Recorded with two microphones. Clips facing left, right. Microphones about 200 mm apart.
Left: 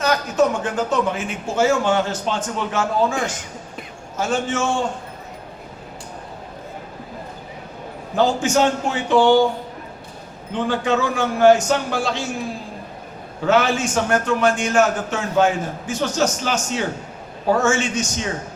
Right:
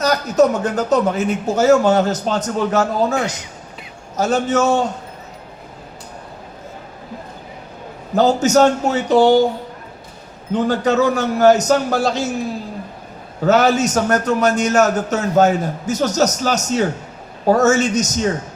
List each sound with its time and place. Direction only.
0.0 s a man's voice: 40° right (ahead or behind)
8.1 s a man's voice: 40° right (ahead or behind)
10.5 s a man's voice: 40° right (ahead or behind)
13.4 s a man's voice: 40° right (ahead or behind)